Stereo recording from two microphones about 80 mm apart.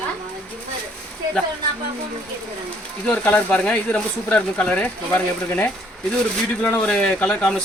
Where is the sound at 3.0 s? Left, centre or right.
Left.